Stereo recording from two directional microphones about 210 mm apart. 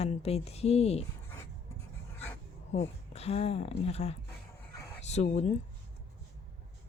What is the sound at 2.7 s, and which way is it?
Speech, 30° left (ahead or behind).